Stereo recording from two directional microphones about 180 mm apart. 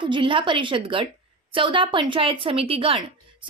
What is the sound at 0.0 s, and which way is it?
A woman's voice, 25° right (ahead or behind).